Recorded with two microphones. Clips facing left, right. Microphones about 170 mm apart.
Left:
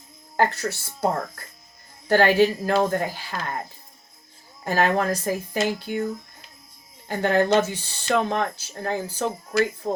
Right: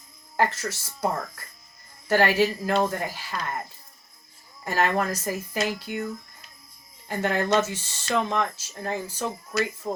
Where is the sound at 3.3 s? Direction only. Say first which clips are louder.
Right 1 dB; 35° left (ahead or behind).